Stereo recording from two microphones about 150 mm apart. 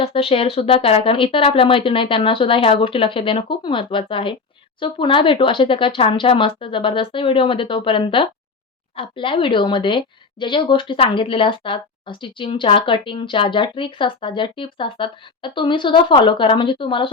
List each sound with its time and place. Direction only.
0.0 s speech: 40° left (ahead or behind)